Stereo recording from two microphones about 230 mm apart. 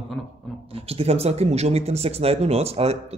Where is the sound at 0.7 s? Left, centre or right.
Right.